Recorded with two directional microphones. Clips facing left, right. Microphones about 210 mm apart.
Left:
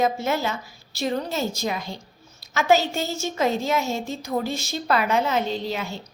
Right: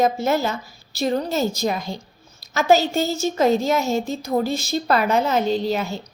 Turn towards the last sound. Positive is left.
turn(degrees=-40)  # may be behind; listen again after turning